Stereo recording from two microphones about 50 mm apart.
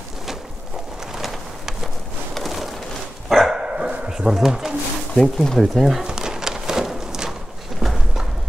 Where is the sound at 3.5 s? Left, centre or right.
Centre.